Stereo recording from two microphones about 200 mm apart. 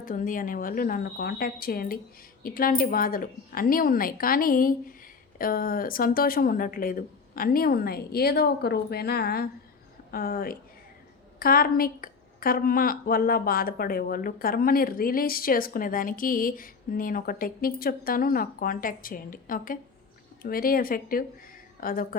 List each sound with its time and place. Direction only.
0.0 s a woman's voice: 40° left (ahead or behind)